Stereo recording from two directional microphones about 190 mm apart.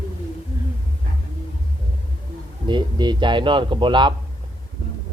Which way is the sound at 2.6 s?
25° right (ahead or behind).